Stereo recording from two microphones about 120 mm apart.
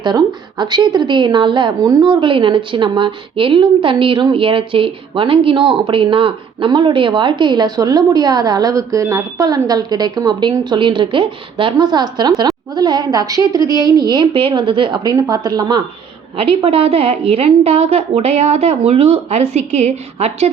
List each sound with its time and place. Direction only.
0.0 s a woman's voice: 40° right (ahead or behind)
15.1 s a woman's voice: 30° right (ahead or behind)
16.4 s a woman's voice: 50° right (ahead or behind)